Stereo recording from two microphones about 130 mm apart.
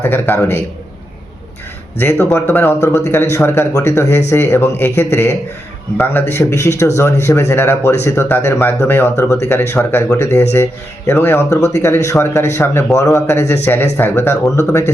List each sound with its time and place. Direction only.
0.0 s a man's voice: 15° left (ahead or behind)
2.0 s speech: 15° left (ahead or behind)
6.3 s speech: 20° left (ahead or behind)